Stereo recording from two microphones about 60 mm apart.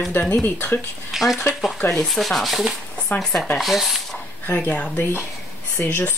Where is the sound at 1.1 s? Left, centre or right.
Centre.